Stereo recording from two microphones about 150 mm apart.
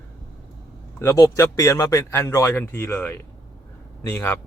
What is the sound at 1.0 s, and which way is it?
Speech, 20° left (ahead or behind).